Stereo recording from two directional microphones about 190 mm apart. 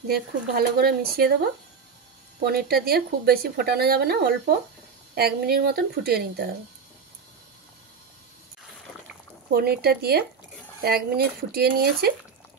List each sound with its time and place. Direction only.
0.1 s speech: 55° right (ahead or behind)
2.4 s a woman's voice: 55° right (ahead or behind)
9.5 s a woman's voice: 55° right (ahead or behind)